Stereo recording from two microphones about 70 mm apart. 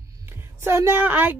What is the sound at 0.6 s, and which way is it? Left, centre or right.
Speech, right.